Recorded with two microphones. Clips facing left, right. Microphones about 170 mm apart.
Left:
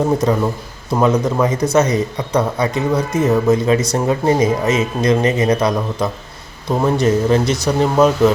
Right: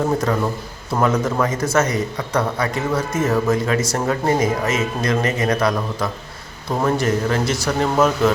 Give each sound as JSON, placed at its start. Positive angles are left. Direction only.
{"t": 0.3, "sound": "a man's voice", "side_deg": 20}